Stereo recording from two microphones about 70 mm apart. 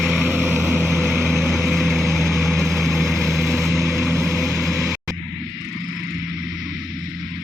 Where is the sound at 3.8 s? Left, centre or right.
Right.